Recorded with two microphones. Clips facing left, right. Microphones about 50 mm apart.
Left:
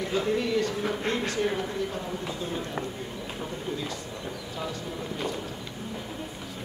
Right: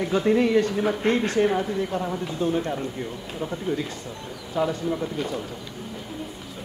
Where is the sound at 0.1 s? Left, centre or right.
Right.